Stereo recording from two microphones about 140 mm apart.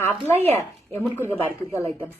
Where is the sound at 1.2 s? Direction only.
20° left (ahead or behind).